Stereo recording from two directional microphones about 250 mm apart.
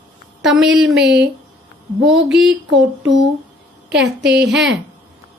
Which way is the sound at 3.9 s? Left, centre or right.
Right.